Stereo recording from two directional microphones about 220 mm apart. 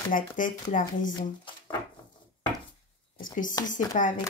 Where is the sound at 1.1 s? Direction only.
20° left (ahead or behind).